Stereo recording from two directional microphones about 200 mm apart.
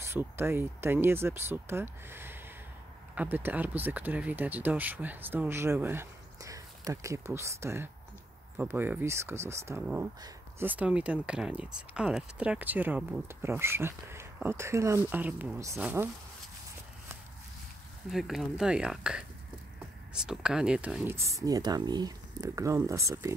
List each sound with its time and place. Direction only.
0.0 s speech: 10° right (ahead or behind)
18.1 s speech: centre (ahead or behind)